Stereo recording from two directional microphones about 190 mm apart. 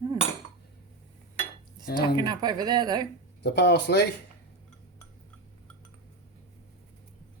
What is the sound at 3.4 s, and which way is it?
Speech, 60° left (ahead or behind).